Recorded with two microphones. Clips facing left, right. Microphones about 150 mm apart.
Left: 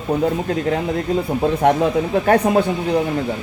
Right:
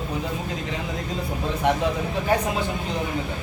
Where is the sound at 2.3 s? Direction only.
65° left (ahead or behind).